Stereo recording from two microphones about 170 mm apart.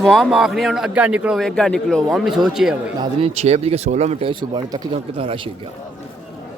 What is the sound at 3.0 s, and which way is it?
Speech, 35° right (ahead or behind).